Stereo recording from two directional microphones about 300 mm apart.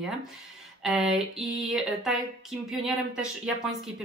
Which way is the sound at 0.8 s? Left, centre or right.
Centre.